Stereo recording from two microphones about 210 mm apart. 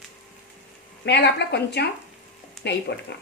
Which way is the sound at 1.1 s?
55° left (ahead or behind).